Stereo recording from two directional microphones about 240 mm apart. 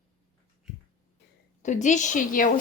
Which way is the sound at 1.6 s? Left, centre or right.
Left.